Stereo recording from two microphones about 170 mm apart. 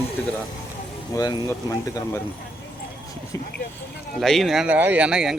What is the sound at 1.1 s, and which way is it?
Speech, 20° left (ahead or behind).